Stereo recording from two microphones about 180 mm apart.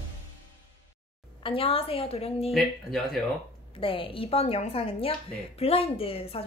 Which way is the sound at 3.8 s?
30° left (ahead or behind).